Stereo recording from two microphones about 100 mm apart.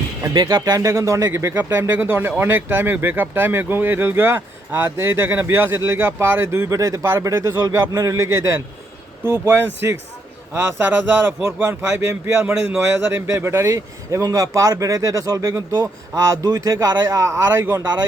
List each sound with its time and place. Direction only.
0.3 s a man's voice: 40° right (ahead or behind)